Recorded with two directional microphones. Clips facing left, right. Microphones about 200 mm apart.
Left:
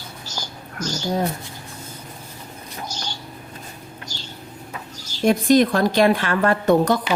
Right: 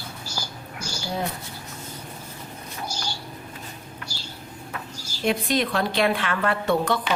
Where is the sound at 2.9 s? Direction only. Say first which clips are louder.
Even; 10° right (ahead or behind).